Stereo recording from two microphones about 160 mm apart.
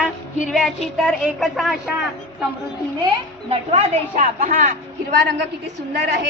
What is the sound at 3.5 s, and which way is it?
A woman's voice, 40° right (ahead or behind).